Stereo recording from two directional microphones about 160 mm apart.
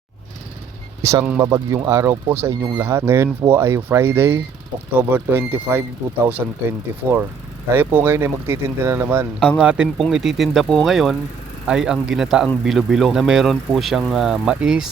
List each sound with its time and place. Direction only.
1.2 s speech: 15° right (ahead or behind)
9.4 s speech: 5° left (ahead or behind)
9.6 s speech: 5° right (ahead or behind)